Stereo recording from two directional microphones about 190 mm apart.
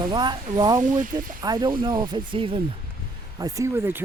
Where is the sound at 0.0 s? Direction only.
25° right (ahead or behind).